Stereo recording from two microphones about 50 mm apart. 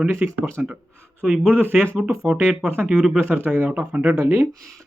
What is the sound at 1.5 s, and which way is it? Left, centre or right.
Speech, right.